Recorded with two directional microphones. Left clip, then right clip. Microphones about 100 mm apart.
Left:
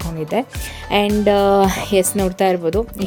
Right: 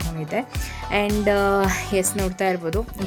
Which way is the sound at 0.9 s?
55° left (ahead or behind).